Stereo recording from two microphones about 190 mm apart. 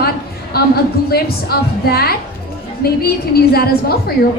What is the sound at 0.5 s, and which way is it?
A woman's voice, 55° left (ahead or behind).